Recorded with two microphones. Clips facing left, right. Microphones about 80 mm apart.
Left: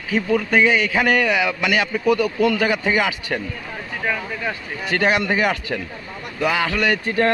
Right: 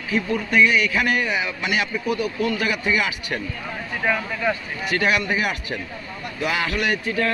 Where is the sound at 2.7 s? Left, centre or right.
Left.